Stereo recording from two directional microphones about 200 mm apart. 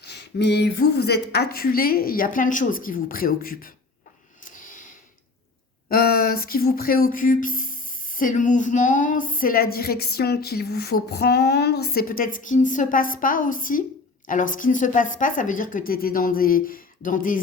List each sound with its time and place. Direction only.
0.0 s speech: 55° left (ahead or behind)
4.4 s a sound: 40° left (ahead or behind)
5.9 s a woman's voice: 50° left (ahead or behind)